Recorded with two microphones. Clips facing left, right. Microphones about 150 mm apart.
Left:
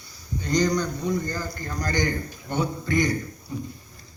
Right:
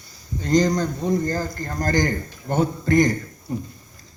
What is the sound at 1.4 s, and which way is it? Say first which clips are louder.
Speech: right 5 dB; 45° right (ahead or behind).